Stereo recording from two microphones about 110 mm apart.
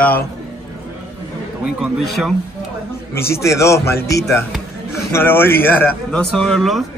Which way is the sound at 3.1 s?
25° left (ahead or behind).